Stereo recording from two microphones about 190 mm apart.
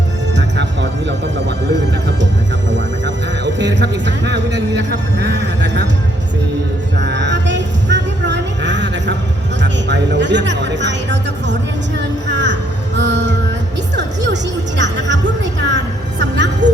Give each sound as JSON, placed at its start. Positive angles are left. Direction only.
{"t": 0.3, "sound": "music", "side_deg": -70}
{"t": 3.4, "sound": "music", "side_deg": -70}
{"t": 7.0, "sound": "music", "side_deg": -70}
{"t": 14.8, "sound": "music", "side_deg": -70}